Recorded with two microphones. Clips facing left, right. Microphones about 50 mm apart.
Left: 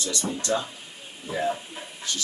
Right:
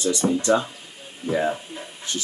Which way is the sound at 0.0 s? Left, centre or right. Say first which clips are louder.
Right 8 dB; right.